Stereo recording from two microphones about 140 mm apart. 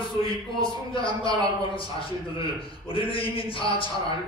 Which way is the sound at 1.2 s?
35° left (ahead or behind).